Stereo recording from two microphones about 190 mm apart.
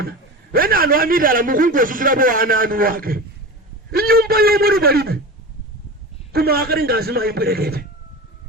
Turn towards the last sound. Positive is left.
turn(degrees=-55)  # may be behind; listen again after turning